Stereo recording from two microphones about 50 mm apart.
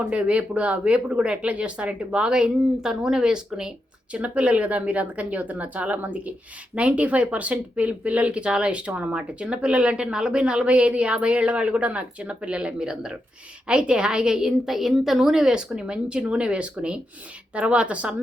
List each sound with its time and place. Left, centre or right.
0.0 s speech: right
4.1 s a woman's voice: right